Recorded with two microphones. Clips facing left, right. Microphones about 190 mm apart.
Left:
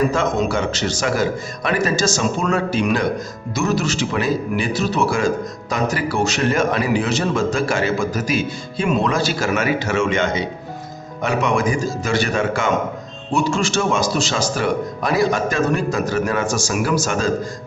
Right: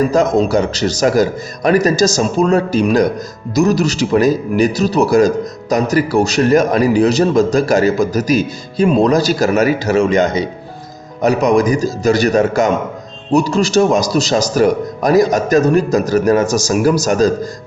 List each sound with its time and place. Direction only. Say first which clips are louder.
0.1 s speech: right 7 dB; 40° right (ahead or behind)